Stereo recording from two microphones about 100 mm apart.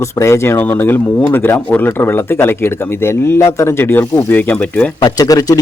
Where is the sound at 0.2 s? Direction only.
25° left (ahead or behind).